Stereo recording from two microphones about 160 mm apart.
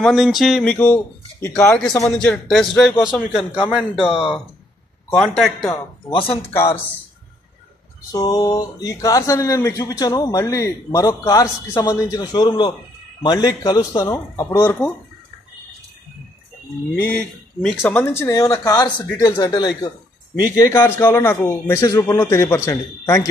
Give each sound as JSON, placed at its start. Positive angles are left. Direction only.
{"t": 0.0, "sound": "speech", "side_deg": 0}
{"t": 4.1, "sound": "speech", "side_deg": 35}
{"t": 5.1, "sound": "speech", "side_deg": 0}
{"t": 5.7, "sound": "speech", "side_deg": 30}
{"t": 8.1, "sound": "speech", "side_deg": 20}
{"t": 16.9, "sound": "a man's voice", "side_deg": 10}